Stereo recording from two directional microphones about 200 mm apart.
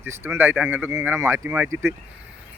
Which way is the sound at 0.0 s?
10° right (ahead or behind).